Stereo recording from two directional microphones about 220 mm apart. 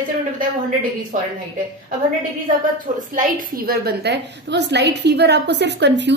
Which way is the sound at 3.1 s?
40° right (ahead or behind).